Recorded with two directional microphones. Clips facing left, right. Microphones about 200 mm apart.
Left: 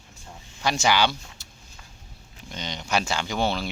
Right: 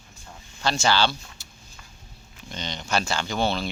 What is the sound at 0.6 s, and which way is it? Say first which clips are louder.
Speech: even; 15° left (ahead or behind).